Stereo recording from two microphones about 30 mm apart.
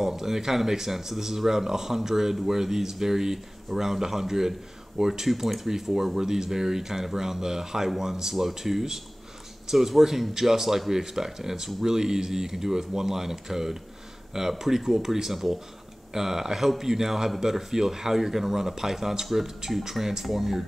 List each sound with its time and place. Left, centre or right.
0.0 s speech: centre
5.3 s speech: centre